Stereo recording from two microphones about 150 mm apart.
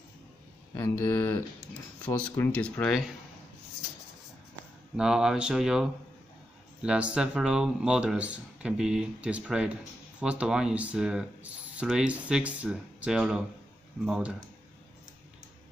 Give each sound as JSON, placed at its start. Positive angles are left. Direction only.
{"t": 0.7, "sound": "speech", "side_deg": 15}
{"t": 4.9, "sound": "speech", "side_deg": -5}